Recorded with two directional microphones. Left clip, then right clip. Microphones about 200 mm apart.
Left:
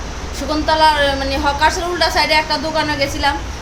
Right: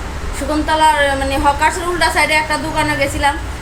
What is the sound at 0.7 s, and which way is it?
A woman's voice, 20° left (ahead or behind).